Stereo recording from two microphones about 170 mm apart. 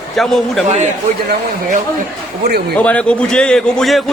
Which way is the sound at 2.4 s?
70° right (ahead or behind).